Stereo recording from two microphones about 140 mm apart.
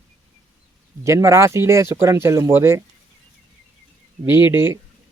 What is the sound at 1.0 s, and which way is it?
Speech, 20° right (ahead or behind).